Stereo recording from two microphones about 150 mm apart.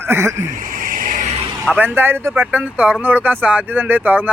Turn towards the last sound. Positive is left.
turn(degrees=-10)  # may be behind; listen again after turning